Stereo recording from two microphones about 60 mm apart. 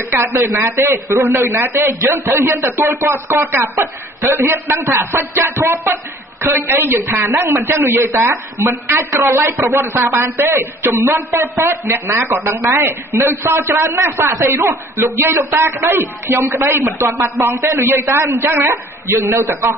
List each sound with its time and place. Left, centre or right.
0.1 s a man's voice: right
17.5 s a man's voice: right
17.7 s a man's voice: right